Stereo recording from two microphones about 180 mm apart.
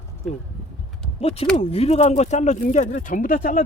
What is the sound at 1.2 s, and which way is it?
Speech, 35° left (ahead or behind).